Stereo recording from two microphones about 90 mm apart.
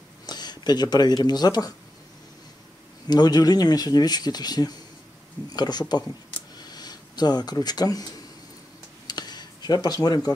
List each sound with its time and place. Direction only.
0.3 s speech: 50° left (ahead or behind)
3.1 s speech: 50° left (ahead or behind)
6.6 s a sound: 50° left (ahead or behind)